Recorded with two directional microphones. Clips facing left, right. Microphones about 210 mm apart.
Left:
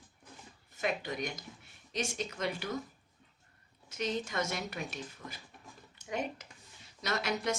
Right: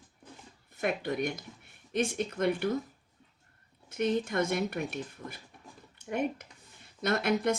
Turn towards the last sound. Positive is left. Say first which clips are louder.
# right 6 dB
turn(degrees=-55)  # may be behind; listen again after turning